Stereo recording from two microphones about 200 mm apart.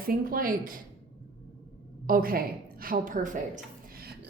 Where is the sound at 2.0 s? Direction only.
45° right (ahead or behind).